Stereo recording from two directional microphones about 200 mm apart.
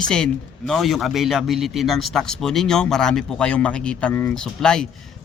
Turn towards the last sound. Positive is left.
turn(degrees=5)  # may be behind; listen again after turning